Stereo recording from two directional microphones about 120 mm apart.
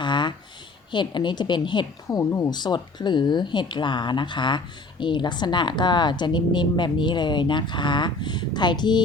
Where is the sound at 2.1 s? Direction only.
25° left (ahead or behind).